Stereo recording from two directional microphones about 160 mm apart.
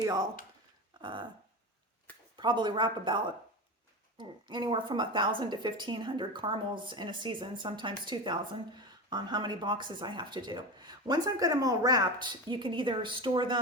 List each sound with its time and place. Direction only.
0.0 s a woman's voice: 25° right (ahead or behind)
2.3 s a woman's voice: 30° right (ahead or behind)